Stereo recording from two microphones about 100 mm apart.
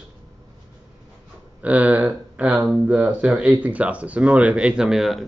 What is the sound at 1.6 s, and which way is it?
Speech, 15° right (ahead or behind).